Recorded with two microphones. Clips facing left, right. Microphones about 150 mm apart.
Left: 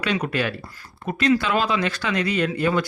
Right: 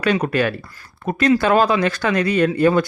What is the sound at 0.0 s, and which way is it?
Speech, 45° right (ahead or behind).